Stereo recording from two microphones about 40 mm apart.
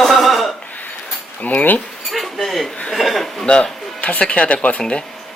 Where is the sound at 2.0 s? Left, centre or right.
Centre.